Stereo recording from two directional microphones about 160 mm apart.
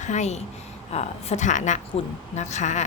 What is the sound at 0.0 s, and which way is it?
A woman's voice, 45° left (ahead or behind).